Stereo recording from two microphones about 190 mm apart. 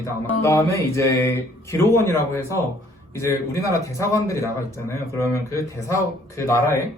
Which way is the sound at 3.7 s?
15° left (ahead or behind).